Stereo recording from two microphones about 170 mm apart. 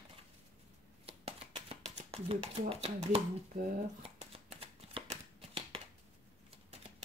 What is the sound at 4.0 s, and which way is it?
Shuffling cards, 35° right (ahead or behind).